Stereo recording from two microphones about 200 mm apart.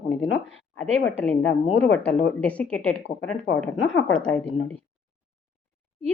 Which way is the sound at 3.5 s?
55° left (ahead or behind).